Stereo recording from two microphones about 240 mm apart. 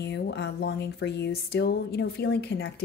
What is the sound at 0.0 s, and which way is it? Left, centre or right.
Speech, left.